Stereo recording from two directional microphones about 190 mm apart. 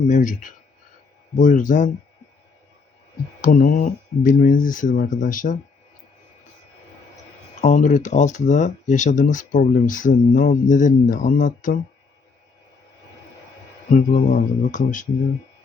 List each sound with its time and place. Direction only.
0.1 s speech: 40° left (ahead or behind)
3.4 s speech: 45° left (ahead or behind)
7.6 s speech: 40° left (ahead or behind)
13.9 s speech: 40° left (ahead or behind)